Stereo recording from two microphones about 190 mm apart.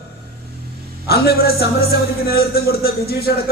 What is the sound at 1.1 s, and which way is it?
A man's voice, 55° left (ahead or behind).